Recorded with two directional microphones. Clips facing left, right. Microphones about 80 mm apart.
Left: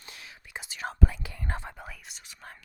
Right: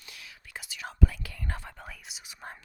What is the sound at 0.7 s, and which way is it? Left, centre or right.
Speech, left.